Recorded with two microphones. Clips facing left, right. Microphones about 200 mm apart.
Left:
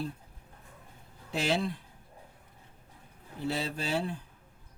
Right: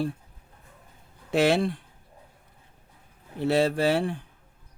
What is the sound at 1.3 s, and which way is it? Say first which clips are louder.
Speech: right 8 dB; 75° right (ahead or behind).